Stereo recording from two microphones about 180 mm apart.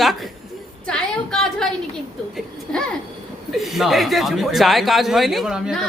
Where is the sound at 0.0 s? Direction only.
Centre (ahead or behind).